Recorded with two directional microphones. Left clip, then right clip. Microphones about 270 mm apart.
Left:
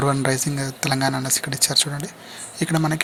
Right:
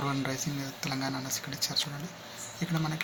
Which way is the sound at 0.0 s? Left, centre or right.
Left.